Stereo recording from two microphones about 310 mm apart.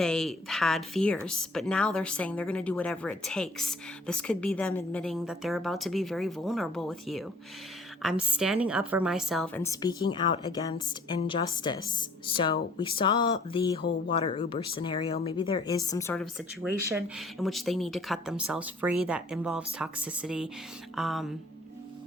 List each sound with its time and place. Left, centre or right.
0.0 s a woman's voice: centre